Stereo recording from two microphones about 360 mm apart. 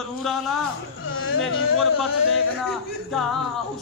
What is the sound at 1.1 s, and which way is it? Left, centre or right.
Speech, left.